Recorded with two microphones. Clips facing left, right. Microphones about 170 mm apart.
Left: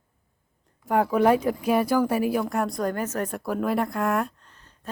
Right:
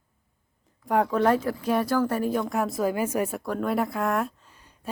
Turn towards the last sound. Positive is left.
turn(degrees=-10)  # may be behind; listen again after turning